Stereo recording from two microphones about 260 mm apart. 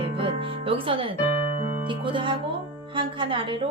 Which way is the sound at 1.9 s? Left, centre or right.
Centre.